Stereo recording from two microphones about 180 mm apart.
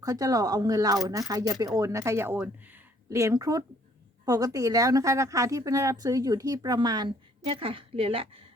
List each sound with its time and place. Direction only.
0.0 s a woman's voice: 20° right (ahead or behind)